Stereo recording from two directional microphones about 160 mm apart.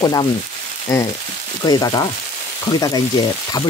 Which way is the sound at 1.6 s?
25° left (ahead or behind).